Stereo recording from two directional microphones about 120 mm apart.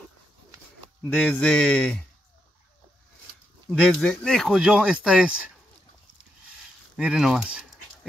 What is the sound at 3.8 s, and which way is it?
Speech, 5° left (ahead or behind).